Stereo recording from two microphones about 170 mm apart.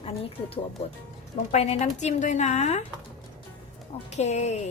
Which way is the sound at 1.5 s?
40° left (ahead or behind).